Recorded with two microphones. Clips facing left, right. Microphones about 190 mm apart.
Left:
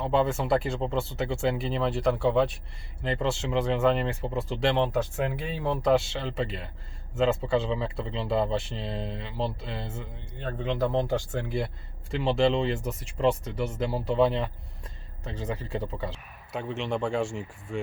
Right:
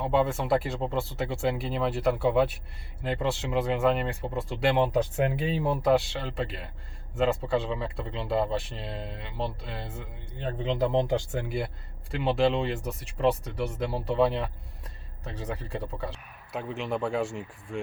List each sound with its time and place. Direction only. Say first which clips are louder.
0.0 s speech: even; centre (ahead or behind); by 5.7 s 20° right (ahead or behind)
5.7 s speech: left 2 dB; 5° right (ahead or behind)
10.4 s speech: right 1 dB; 15° right (ahead or behind); by 17.7 s centre (ahead or behind)